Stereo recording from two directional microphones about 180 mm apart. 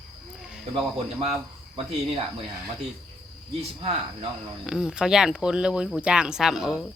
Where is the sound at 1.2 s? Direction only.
35° right (ahead or behind).